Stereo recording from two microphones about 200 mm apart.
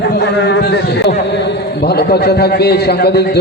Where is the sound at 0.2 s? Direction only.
60° left (ahead or behind).